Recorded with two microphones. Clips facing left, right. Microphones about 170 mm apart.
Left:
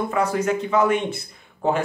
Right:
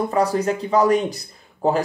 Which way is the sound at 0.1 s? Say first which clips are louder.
Right 2 dB; 35° right (ahead or behind).